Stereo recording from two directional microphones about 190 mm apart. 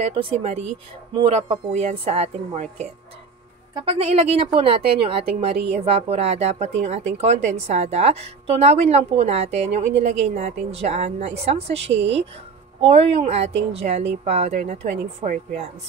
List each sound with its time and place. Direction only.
0.0 s a woman's voice: 30° right (ahead or behind)